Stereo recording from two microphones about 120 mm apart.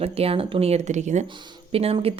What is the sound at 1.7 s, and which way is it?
Speech, 55° right (ahead or behind).